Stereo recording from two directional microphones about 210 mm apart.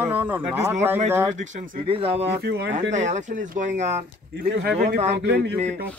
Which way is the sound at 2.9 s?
35° right (ahead or behind).